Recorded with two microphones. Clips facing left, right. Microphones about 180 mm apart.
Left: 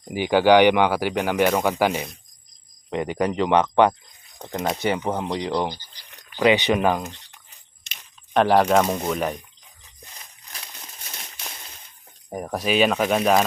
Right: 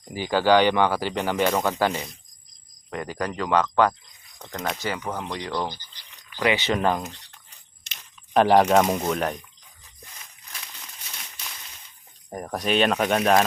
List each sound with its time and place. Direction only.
0.0 s speech: 15° left (ahead or behind)
6.0 s cricket: 55° left (ahead or behind)
6.3 s speech: 20° left (ahead or behind)
8.3 s speech: centre (ahead or behind)
12.3 s speech: 5° left (ahead or behind)